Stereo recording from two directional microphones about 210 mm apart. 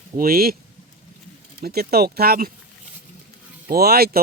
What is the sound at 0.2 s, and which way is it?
Speech, 45° right (ahead or behind).